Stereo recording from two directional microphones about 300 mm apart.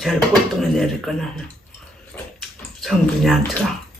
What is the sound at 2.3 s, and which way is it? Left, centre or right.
Bathtub, centre.